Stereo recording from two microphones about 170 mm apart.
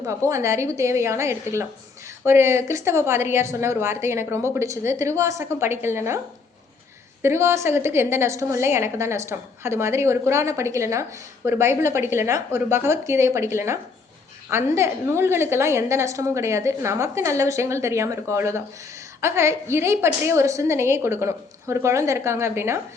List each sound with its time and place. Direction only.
0.3 s a woman's voice: 15° right (ahead or behind)
7.2 s a woman's voice: 15° right (ahead or behind)